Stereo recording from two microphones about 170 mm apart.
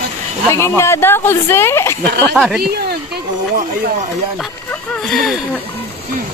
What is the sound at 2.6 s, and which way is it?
Speech, 70° right (ahead or behind).